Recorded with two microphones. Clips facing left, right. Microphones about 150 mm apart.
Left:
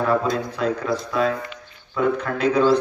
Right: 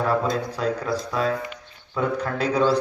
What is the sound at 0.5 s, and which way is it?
A man's voice, 35° right (ahead or behind).